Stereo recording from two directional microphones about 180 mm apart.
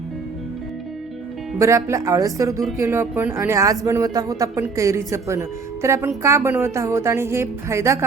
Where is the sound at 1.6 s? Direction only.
15° right (ahead or behind).